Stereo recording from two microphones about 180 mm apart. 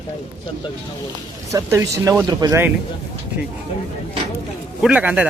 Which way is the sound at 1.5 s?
15° right (ahead or behind).